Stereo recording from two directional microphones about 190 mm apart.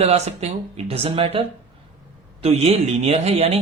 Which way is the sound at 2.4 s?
30° right (ahead or behind).